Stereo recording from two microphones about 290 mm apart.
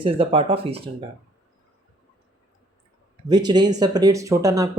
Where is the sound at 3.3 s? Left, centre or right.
Centre.